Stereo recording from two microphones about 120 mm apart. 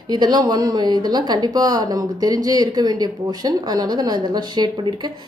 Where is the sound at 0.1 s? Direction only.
35° right (ahead or behind).